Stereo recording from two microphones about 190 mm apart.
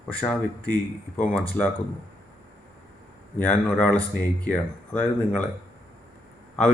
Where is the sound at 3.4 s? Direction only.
10° left (ahead or behind).